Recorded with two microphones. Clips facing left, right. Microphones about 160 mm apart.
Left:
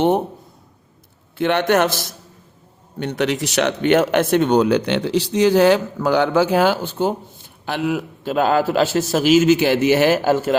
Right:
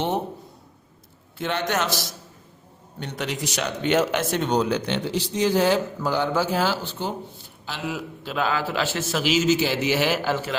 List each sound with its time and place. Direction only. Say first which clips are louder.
1.4 s a man's voice: left 9 dB; 65° left (ahead or behind)
3.0 s a man's voice: left 9 dB; 65° left (ahead or behind); by 10.5 s 45° left (ahead or behind)